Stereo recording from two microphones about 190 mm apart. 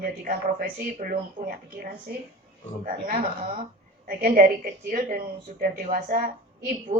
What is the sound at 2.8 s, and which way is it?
A woman's voice, 45° right (ahead or behind).